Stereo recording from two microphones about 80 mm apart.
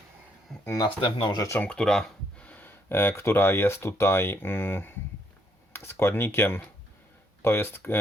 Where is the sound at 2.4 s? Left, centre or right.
Left.